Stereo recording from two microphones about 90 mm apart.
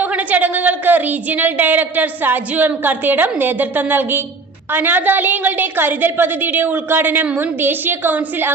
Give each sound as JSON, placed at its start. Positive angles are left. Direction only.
{"t": 0.0, "sound": "a woman's voice", "side_deg": -15}